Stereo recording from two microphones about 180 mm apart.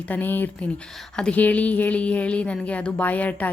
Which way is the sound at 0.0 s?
10° left (ahead or behind).